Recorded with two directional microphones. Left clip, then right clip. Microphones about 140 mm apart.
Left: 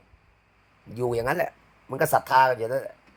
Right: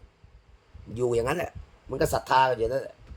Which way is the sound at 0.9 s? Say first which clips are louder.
Left 1 dB; 20° right (ahead or behind).